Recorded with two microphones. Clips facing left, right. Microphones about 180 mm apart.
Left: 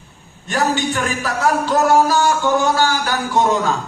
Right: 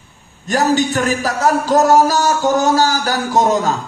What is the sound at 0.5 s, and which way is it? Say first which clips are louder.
Speech: right 4 dB; 40° right (ahead or behind).